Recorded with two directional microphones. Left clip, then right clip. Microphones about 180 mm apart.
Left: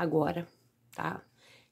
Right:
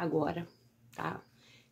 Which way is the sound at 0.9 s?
25° left (ahead or behind).